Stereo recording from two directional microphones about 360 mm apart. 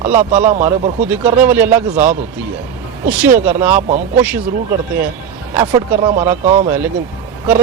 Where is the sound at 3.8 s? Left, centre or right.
Right.